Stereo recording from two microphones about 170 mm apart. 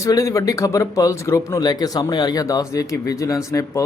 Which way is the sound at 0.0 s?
20° left (ahead or behind).